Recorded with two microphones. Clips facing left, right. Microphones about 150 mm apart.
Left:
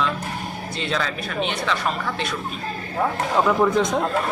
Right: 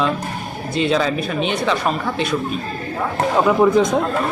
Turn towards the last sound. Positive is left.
turn(degrees=-5)  # may be behind; listen again after turning